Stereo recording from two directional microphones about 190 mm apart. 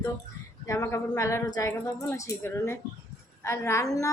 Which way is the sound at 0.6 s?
15° left (ahead or behind).